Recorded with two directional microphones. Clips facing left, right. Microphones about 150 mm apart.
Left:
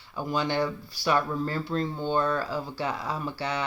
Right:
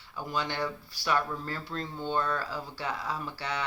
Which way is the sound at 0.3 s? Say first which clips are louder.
Left 5 dB; 20° left (ahead or behind).